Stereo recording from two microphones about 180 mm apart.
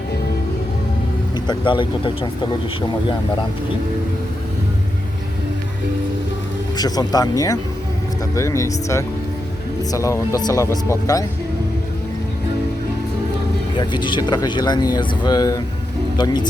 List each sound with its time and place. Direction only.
1.5 s speech: 25° left (ahead or behind)
6.7 s speech: 20° left (ahead or behind)
13.7 s speech: 25° left (ahead or behind)